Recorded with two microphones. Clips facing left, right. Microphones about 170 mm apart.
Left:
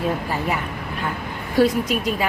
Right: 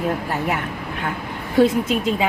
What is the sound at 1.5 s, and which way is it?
Speech, 25° right (ahead or behind).